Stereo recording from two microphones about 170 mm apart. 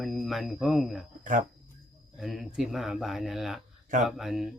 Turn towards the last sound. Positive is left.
turn(degrees=0)  # may be behind; listen again after turning